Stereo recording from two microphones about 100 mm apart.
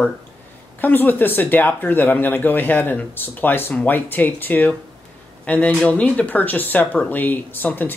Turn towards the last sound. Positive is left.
turn(degrees=20)  # may be behind; listen again after turning